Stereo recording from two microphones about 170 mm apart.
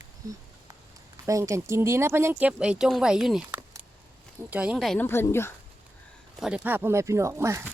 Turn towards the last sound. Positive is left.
turn(degrees=-15)  # may be behind; listen again after turning